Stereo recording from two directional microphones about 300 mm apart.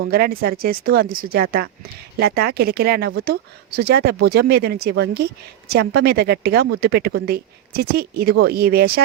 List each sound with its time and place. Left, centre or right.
0.1 s speech: right